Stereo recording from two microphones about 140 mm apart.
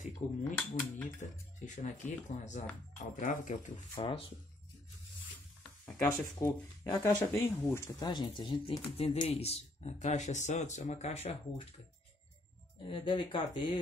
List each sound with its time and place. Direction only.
0.2 s speech: 55° left (ahead or behind)
0.6 s speech: 10° left (ahead or behind)
1.6 s speech: 60° left (ahead or behind)
4.0 s speech: 45° left (ahead or behind)
5.6 s speech: 15° left (ahead or behind)
8.0 s speech: 35° left (ahead or behind)
12.8 s speech: 35° left (ahead or behind)